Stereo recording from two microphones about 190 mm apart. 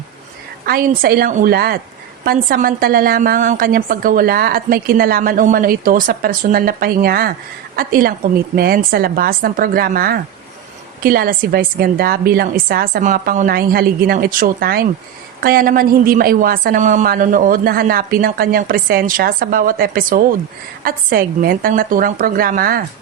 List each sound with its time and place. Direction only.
0.6 s a woman's voice: 50° right (ahead or behind)